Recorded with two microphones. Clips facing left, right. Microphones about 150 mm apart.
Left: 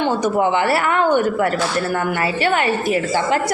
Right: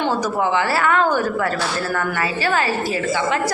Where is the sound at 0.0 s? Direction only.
25° left (ahead or behind).